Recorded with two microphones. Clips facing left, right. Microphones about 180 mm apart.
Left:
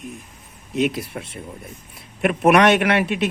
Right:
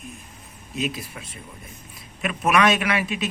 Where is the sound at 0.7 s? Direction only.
65° left (ahead or behind).